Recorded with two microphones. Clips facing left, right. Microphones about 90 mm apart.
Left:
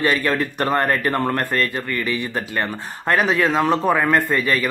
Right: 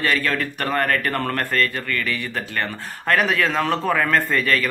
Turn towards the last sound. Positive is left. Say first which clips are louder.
# left 1 dB
turn(degrees=15)  # may be behind; listen again after turning